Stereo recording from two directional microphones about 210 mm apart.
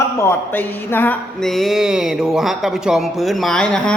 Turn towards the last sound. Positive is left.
turn(degrees=5)  # may be behind; listen again after turning